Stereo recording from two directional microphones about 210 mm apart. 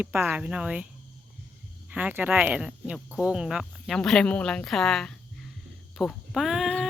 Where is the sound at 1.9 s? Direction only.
10° right (ahead or behind).